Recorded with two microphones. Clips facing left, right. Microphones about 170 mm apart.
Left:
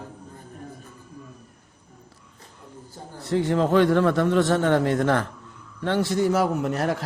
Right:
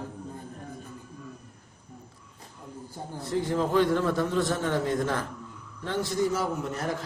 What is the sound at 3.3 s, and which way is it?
A man's voice, 75° left (ahead or behind).